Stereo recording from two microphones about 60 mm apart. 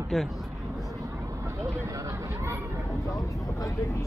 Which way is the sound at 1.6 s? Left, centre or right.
Right.